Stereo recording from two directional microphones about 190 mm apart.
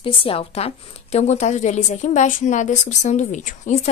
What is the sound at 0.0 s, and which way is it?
A woman's voice, 30° left (ahead or behind).